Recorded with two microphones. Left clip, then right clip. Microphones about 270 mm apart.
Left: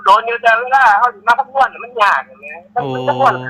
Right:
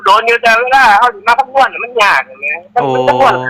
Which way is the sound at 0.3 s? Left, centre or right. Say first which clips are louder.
Right 4 dB; right.